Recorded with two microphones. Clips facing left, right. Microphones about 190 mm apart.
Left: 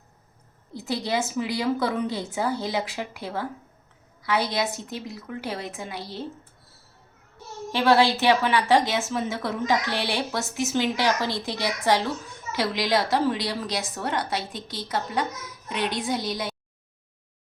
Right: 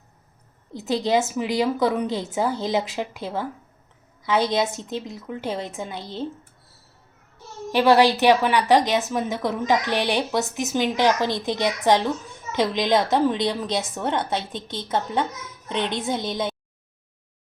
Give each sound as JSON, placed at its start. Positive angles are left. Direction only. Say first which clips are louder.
{"t": 0.7, "sound": "a woman's voice", "louder": "right 6 dB", "side_deg": -20}
{"t": 7.7, "sound": "a woman's voice", "louder": "right 3 dB", "side_deg": -15}